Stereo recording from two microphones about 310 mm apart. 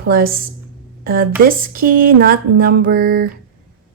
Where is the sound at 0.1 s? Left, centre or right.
Right.